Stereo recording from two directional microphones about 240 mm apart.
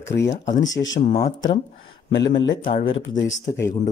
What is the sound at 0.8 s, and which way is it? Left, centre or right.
Speech, left.